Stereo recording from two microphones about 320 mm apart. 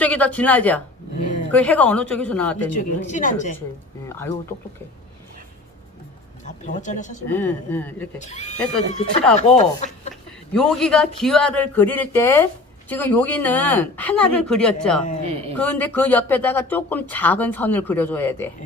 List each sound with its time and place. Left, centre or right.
0.0 s speech: centre
2.7 s speech: left
4.1 s speech: centre
6.4 s speech: left
7.3 s speech: centre
8.2 s speech: left
10.5 s speech: centre